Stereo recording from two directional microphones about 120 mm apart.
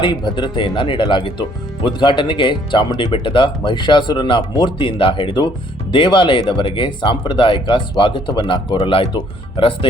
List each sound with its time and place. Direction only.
0.0 s speech: 40° left (ahead or behind)